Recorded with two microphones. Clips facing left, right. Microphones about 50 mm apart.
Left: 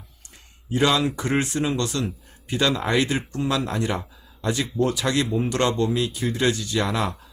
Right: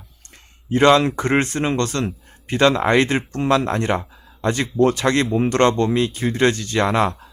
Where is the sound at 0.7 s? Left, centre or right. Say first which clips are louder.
Right 7 dB; right.